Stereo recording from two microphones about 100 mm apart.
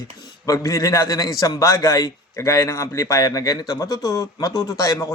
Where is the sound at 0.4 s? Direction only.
35° left (ahead or behind).